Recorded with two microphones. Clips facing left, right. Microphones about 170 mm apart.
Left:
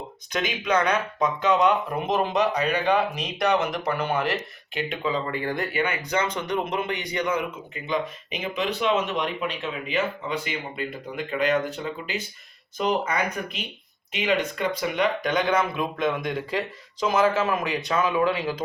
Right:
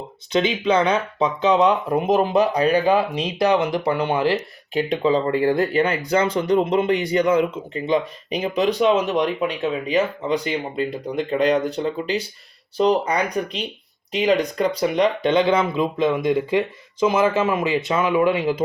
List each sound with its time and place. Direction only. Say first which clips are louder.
0.3 s speech: right 6 dB; 30° right (ahead or behind)